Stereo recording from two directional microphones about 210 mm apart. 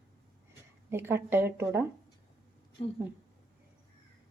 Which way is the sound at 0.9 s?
10° right (ahead or behind).